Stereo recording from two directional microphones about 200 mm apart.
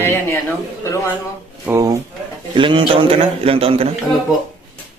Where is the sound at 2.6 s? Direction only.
25° right (ahead or behind).